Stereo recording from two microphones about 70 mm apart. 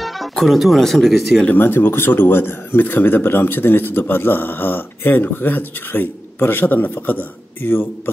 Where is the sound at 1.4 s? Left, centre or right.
Left.